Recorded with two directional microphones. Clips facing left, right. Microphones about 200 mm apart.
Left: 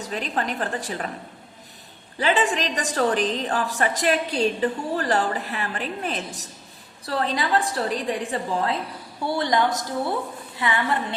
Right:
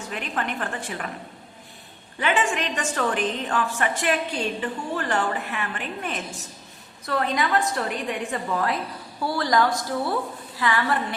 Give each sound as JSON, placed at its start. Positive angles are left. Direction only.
{"t": 0.0, "sound": "a woman's voice", "side_deg": 35}
{"t": 2.1, "sound": "a woman's voice", "side_deg": 35}